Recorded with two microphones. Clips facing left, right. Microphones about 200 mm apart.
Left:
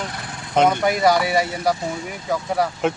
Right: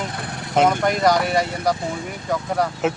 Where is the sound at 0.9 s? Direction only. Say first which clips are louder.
Left 1 dB; 10° left (ahead or behind).